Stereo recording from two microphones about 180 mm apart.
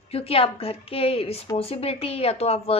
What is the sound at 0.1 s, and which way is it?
A woman's voice, 30° left (ahead or behind).